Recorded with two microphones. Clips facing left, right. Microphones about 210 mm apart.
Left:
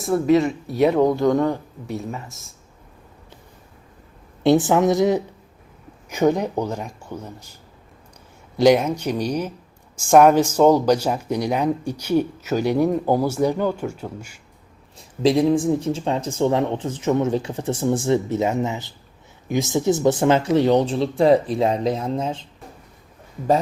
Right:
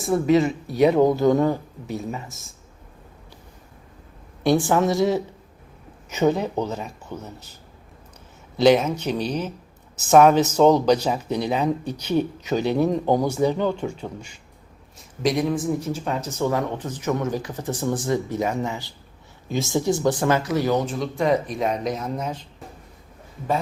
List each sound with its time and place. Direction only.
0.0 s speech: centre (ahead or behind)
4.4 s speech: 20° left (ahead or behind)
8.5 s speech: 10° left (ahead or behind)
14.9 s speech: 30° left (ahead or behind)